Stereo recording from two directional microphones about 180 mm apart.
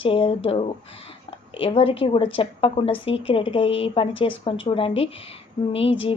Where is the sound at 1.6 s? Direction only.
30° left (ahead or behind).